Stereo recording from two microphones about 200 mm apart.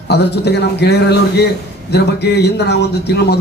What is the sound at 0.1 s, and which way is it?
Speech, 55° left (ahead or behind).